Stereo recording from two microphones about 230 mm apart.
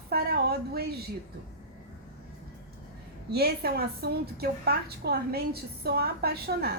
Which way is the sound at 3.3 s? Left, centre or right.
Right.